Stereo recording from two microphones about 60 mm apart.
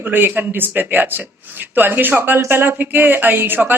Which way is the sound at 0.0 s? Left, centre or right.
Right.